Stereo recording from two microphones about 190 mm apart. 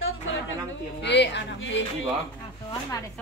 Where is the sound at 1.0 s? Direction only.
65° left (ahead or behind).